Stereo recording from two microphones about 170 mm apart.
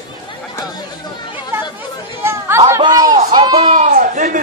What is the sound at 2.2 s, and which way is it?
Chatter, 15° right (ahead or behind).